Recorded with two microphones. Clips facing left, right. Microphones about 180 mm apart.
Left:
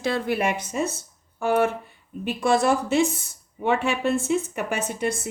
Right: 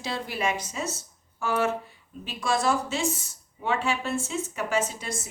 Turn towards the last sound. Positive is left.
turn(degrees=60)  # may be behind; listen again after turning